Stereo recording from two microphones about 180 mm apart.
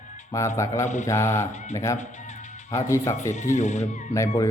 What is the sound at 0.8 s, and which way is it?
Speech, 40° left (ahead or behind).